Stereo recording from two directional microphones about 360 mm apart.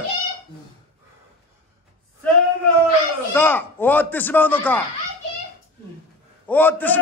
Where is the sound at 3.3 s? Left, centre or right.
Centre.